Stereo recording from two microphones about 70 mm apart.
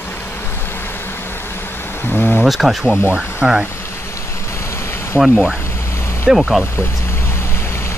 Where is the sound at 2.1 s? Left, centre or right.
Left.